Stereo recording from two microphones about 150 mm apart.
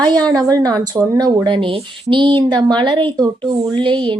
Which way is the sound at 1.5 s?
35° right (ahead or behind).